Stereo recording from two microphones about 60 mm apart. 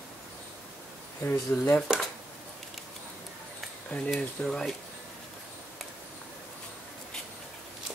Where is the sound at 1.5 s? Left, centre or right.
Centre.